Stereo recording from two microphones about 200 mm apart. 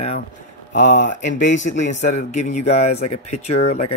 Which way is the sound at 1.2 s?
35° left (ahead or behind).